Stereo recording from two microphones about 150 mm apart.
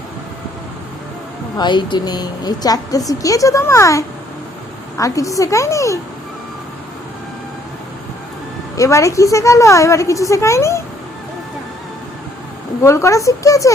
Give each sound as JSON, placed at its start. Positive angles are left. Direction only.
{"t": 1.5, "sound": "a woman's voice", "side_deg": 30}
{"t": 8.7, "sound": "a woman's voice", "side_deg": 20}
{"t": 12.8, "sound": "a woman's voice", "side_deg": 20}